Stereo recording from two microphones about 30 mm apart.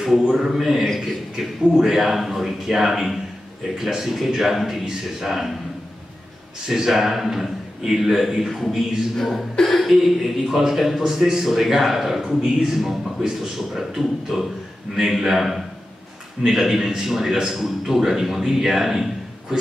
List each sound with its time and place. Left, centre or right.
0.0 s a man's voice: centre
2.0 s a man's voice: centre
6.7 s a man's voice: centre
9.2 s a man's voice: centre
11.0 s a man's voice: centre
11.4 s a man's voice: centre
12.3 s a man's voice: centre